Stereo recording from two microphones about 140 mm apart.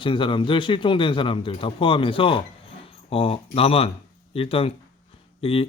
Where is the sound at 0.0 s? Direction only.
35° left (ahead or behind).